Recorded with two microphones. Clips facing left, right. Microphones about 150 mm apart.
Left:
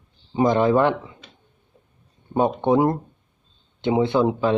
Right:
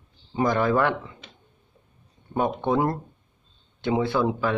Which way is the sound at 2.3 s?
20° left (ahead or behind).